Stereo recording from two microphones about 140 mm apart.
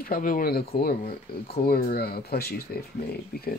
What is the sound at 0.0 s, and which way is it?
Speech, 90° left.